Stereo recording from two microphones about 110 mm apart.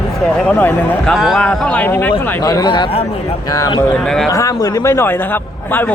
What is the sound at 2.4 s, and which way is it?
Speech, 40° left (ahead or behind).